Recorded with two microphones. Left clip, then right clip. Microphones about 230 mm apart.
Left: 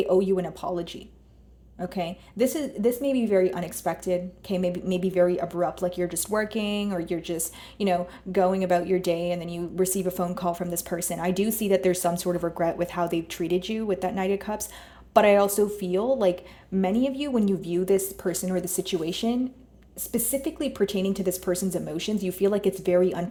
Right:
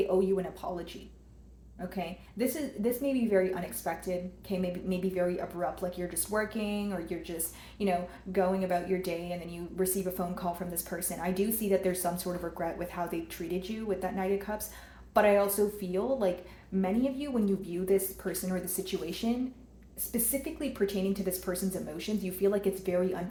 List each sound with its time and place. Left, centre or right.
0.1 s a woman's voice: left